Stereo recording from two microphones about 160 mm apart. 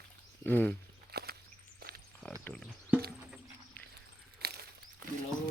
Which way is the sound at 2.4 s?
5° left (ahead or behind).